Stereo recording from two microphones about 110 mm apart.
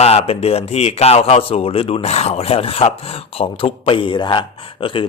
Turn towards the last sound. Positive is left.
turn(degrees=50)  # may be behind; listen again after turning